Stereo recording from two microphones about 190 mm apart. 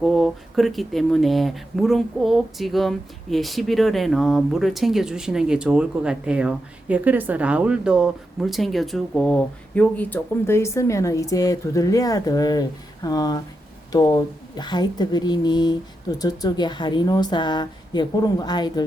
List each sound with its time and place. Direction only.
0.0 s a woman's voice: centre (ahead or behind); by 18.9 s 20° left (ahead or behind)